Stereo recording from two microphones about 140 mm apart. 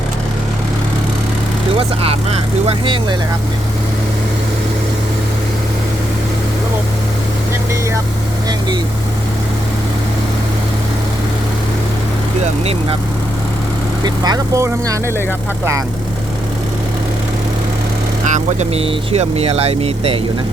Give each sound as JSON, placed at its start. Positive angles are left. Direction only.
{"t": 1.7, "sound": "speech", "side_deg": -40}
{"t": 14.0, "sound": "speech", "side_deg": -30}
{"t": 18.3, "sound": "speech", "side_deg": -55}